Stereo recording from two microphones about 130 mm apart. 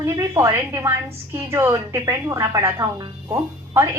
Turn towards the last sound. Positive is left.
turn(degrees=-20)  # may be behind; listen again after turning